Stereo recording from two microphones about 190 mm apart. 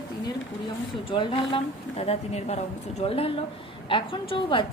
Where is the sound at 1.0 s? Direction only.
25° left (ahead or behind).